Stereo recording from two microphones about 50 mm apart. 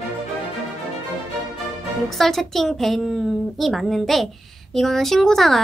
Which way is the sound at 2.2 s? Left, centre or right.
Centre.